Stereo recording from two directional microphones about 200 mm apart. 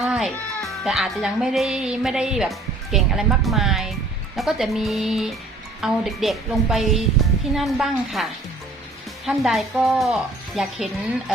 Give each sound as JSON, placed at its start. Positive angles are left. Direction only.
{"t": 0.0, "sound": "speech", "side_deg": 0}